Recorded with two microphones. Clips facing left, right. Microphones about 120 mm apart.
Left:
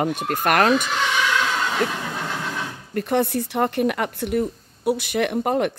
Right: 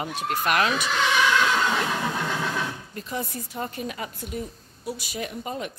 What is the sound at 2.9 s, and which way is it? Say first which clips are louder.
Speech: left 11 dB; 65° left (ahead or behind).